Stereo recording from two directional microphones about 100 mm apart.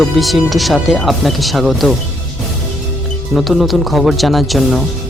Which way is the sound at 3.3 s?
Centre (ahead or behind).